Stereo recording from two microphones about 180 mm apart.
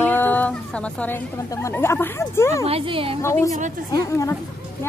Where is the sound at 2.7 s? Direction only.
30° right (ahead or behind).